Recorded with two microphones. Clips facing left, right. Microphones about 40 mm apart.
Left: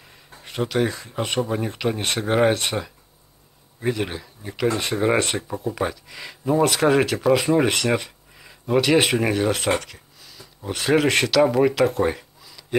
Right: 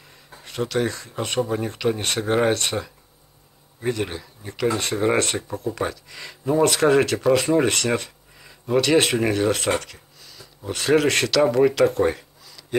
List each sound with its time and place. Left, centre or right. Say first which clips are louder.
0.0 s speech: even; centre